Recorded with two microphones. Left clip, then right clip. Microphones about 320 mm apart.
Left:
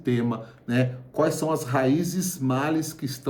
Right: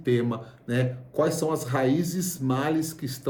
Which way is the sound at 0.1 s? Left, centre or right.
Centre.